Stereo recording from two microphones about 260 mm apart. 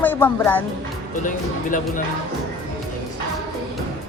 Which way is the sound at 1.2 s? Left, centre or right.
Left.